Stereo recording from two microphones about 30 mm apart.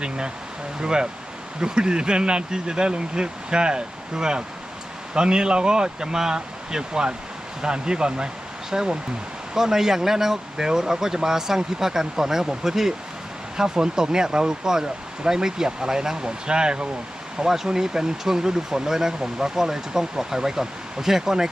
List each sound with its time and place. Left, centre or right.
0.8 s speech: right
17.4 s speech: centre